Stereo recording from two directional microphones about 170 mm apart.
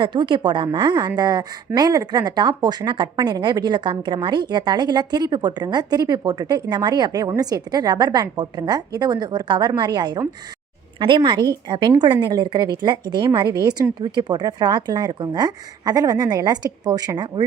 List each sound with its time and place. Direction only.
0.0 s a woman's voice: 25° right (ahead or behind)